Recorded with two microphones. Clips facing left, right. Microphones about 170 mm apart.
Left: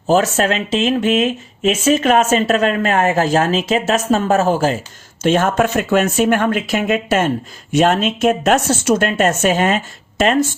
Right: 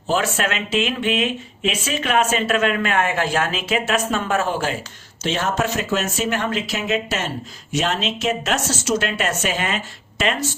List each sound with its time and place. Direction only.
0.1 s speech: 40° left (ahead or behind)
5.2 s speech: 50° left (ahead or behind)